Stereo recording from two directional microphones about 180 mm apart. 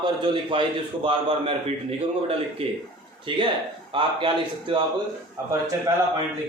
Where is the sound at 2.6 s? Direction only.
30° right (ahead or behind).